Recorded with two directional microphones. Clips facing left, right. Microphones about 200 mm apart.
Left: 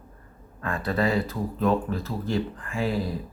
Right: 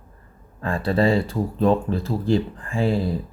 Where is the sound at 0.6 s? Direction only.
30° right (ahead or behind).